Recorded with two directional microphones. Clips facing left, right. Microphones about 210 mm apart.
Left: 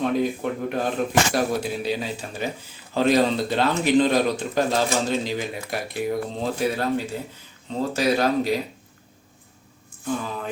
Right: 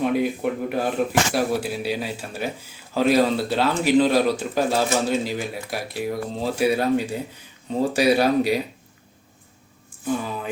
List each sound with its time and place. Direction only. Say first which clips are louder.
0.0 s speech: right 1 dB; 10° right (ahead or behind)